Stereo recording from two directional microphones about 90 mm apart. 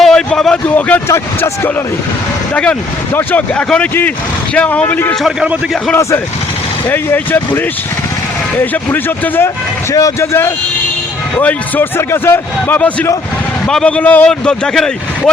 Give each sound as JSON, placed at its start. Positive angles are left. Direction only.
{"t": 0.0, "sound": "a sound", "side_deg": 5}
{"t": 0.8, "sound": "a man's voice", "side_deg": 20}
{"t": 1.0, "sound": "a man's voice", "side_deg": 30}
{"t": 3.2, "sound": "a man's voice", "side_deg": 15}
{"t": 6.8, "sound": "a man's voice", "side_deg": 20}
{"t": 9.9, "sound": "a man's voice", "side_deg": 35}
{"t": 11.3, "sound": "a man's voice", "side_deg": 15}
{"t": 11.9, "sound": "a man's voice", "side_deg": 25}